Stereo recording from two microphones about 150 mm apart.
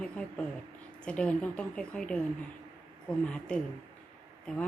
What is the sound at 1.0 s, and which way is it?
Speech, 10° left (ahead or behind).